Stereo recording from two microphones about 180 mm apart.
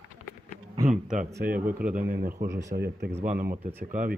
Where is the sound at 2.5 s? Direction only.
15° right (ahead or behind).